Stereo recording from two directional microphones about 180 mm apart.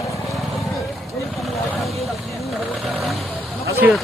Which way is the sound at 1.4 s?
Centre (ahead or behind).